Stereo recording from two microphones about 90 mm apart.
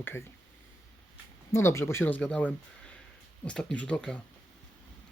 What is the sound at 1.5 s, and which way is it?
Speech, 30° left (ahead or behind).